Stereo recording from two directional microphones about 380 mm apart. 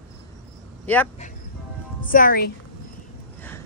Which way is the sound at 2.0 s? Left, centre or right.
Left.